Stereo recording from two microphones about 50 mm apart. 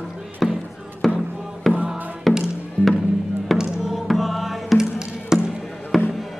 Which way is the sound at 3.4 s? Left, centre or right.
Centre.